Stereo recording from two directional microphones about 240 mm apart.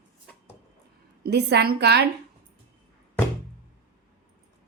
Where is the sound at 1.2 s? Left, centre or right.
Right.